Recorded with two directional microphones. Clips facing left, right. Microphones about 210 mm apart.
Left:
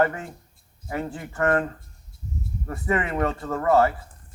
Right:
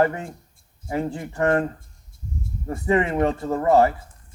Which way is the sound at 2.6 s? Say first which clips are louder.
Right 5 dB; 25° right (ahead or behind).